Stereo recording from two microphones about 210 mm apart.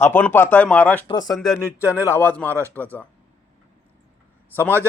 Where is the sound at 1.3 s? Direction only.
Centre (ahead or behind).